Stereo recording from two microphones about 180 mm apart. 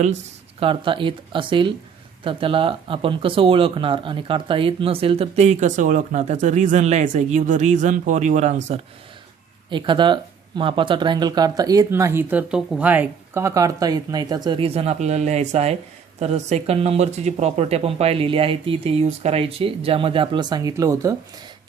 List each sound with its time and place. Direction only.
0.6 s speech: 30° right (ahead or behind)
9.6 s speech: 25° right (ahead or behind)